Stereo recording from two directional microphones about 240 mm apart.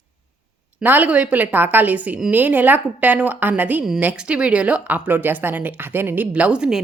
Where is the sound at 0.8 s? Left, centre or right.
Centre.